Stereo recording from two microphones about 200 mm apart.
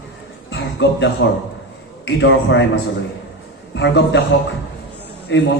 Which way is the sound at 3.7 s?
60° left (ahead or behind).